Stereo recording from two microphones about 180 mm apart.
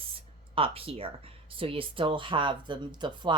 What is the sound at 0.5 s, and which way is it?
Speech, 30° right (ahead or behind).